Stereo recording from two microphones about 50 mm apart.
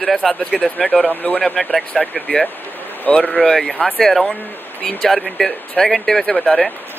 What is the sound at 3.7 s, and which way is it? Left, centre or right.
Speech, left.